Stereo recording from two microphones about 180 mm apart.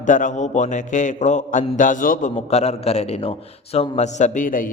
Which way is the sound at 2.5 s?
35° left (ahead or behind).